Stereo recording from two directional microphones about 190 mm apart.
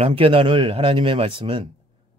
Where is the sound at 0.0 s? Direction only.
30° right (ahead or behind).